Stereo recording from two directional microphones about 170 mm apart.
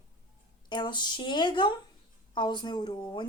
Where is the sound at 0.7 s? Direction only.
25° left (ahead or behind).